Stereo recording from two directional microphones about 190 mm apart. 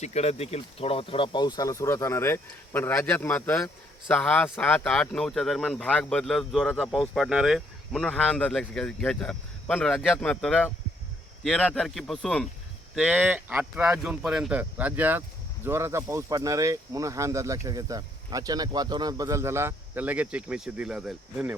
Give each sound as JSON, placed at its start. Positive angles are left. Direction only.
{"t": 0.0, "sound": "speech", "side_deg": 35}